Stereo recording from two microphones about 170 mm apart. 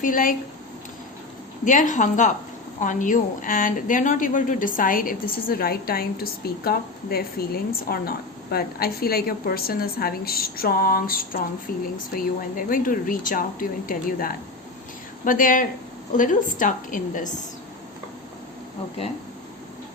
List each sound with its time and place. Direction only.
0.0 s a woman's voice: 55° left (ahead or behind)
1.6 s a woman's voice: 50° left (ahead or behind)